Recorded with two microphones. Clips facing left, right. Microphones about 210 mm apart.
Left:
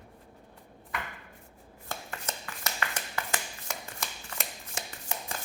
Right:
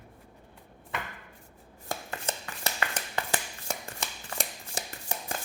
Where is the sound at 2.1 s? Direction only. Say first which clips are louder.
Right 3 dB; 30° right (ahead or behind).